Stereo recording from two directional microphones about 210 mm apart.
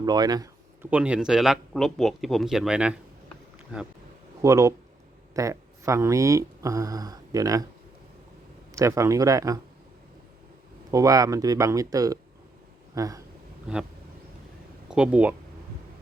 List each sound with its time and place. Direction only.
0.0 s a sound: 20° right (ahead or behind)
0.9 s speech: 5° right (ahead or behind)
4.4 s speech: 15° right (ahead or behind)
8.7 s speech: 15° right (ahead or behind)
10.9 s speech: 15° right (ahead or behind)
14.8 s speech: 5° right (ahead or behind)